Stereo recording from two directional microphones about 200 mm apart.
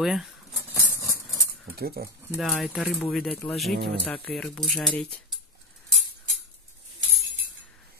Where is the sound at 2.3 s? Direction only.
Centre (ahead or behind).